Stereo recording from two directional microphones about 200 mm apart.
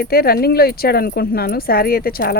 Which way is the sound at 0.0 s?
50° left (ahead or behind).